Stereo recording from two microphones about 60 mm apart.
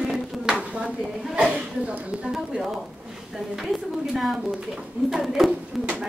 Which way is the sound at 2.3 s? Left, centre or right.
Centre.